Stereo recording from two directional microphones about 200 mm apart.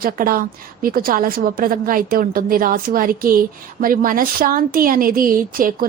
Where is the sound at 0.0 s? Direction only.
45° right (ahead or behind).